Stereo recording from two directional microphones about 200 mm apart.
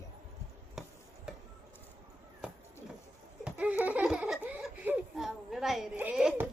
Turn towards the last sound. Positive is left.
turn(degrees=-5)  # may be behind; listen again after turning